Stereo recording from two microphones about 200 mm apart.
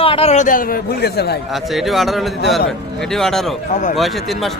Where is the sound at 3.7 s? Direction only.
40° left (ahead or behind).